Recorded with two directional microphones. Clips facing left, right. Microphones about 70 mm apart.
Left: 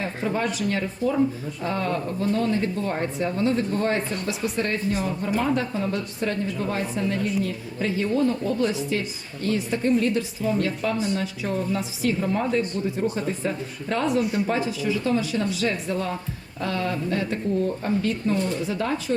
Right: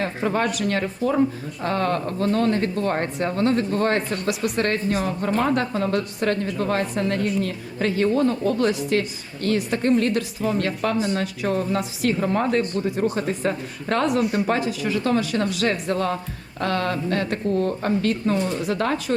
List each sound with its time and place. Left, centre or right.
0.0 s a woman's voice: right